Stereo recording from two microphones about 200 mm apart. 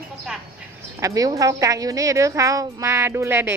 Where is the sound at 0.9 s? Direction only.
15° right (ahead or behind).